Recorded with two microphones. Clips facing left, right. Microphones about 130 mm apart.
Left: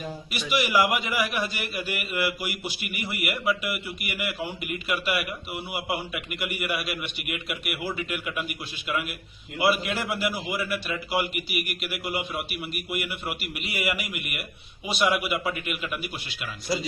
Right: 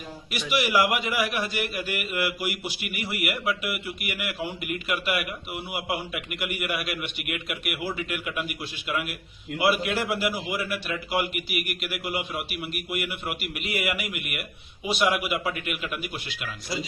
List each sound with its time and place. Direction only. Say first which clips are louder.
0.3 s a man's voice: even; 5° right (ahead or behind)